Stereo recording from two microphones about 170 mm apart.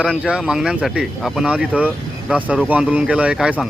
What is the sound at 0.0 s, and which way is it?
Speech, 5° right (ahead or behind).